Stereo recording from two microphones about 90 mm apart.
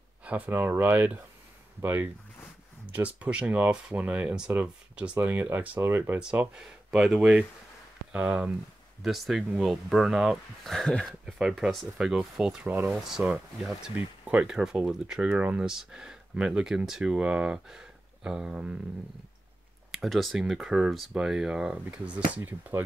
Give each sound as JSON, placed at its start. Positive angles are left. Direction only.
{"t": 0.5, "sound": "speech", "side_deg": -25}
{"t": 6.1, "sound": "speech", "side_deg": -15}
{"t": 10.7, "sound": "speech", "side_deg": 5}
{"t": 12.6, "sound": "speech", "side_deg": -20}
{"t": 19.9, "sound": "speech", "side_deg": 0}